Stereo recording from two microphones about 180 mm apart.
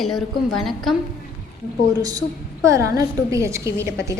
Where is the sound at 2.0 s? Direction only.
20° right (ahead or behind).